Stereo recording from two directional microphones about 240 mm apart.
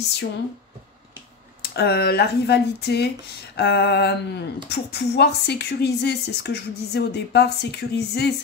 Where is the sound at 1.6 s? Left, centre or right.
Left.